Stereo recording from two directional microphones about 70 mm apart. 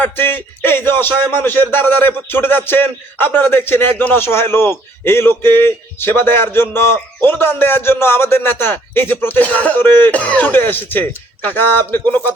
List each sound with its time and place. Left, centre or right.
0.0 s a man's voice: left